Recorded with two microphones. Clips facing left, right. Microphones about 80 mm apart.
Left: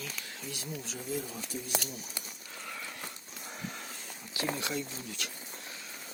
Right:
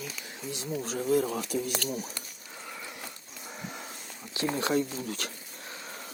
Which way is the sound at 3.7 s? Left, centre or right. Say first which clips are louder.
Right 2 dB; right.